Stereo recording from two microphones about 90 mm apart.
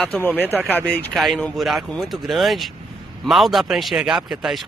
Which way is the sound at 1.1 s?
Centre (ahead or behind).